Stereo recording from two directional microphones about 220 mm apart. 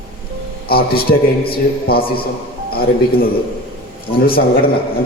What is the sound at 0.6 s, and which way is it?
Mantra, 45° left (ahead or behind).